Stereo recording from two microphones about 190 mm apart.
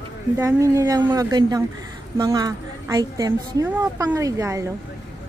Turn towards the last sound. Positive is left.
turn(degrees=-15)  # may be behind; listen again after turning